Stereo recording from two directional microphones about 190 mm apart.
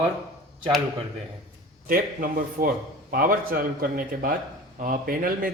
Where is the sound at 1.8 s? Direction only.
50° right (ahead or behind).